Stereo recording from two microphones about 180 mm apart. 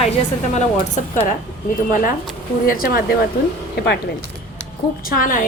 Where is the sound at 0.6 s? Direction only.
40° left (ahead or behind).